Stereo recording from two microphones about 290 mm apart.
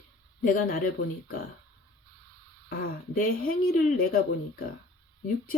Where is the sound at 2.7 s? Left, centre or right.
Left.